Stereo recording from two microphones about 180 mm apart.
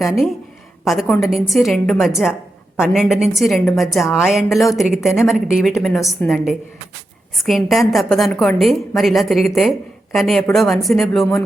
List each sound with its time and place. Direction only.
0.9 s a woman's voice: centre (ahead or behind)